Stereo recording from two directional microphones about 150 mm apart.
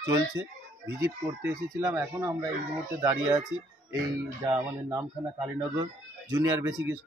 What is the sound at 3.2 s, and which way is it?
Speech, 5° right (ahead or behind).